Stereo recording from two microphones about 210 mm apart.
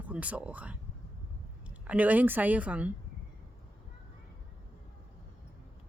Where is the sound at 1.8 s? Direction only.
5° right (ahead or behind).